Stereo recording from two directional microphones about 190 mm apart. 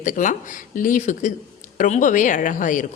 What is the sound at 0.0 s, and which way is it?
A woman's voice, 45° left (ahead or behind).